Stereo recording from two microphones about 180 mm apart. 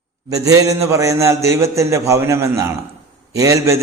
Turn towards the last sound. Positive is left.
turn(degrees=-15)  # may be behind; listen again after turning